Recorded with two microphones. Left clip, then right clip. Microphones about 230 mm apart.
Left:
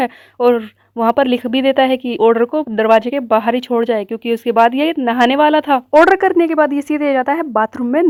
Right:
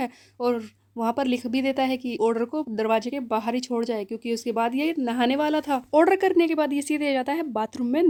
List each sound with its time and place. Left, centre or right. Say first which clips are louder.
0.0 s speech: left 13 dB; left
6.0 s speech: left 8 dB; centre